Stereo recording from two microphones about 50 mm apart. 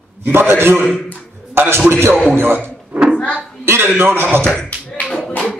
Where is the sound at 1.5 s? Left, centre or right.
Right.